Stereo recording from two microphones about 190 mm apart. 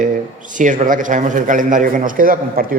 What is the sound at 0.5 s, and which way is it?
A man's voice, 40° right (ahead or behind).